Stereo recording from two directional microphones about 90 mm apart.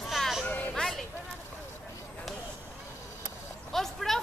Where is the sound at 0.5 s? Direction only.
15° left (ahead or behind).